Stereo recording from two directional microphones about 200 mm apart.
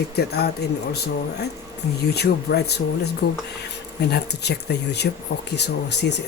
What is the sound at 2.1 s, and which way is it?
Speech, 55° left (ahead or behind).